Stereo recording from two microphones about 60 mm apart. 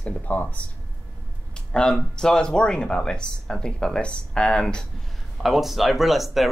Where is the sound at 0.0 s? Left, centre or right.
Left.